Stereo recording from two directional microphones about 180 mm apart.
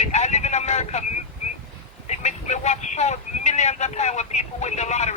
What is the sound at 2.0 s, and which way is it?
Speech, 40° left (ahead or behind).